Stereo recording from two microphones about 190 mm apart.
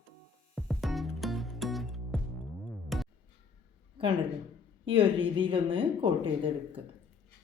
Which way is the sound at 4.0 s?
30° right (ahead or behind).